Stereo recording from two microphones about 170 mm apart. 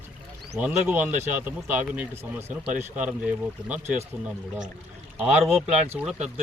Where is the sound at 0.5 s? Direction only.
10° right (ahead or behind).